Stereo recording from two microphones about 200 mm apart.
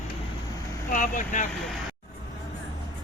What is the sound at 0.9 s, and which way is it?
Speech, 40° left (ahead or behind).